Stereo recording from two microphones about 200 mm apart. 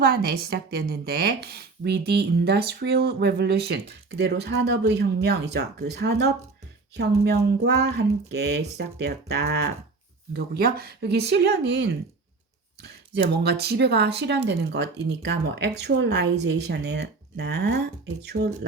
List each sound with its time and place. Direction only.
0.0 s speech: 50° right (ahead or behind)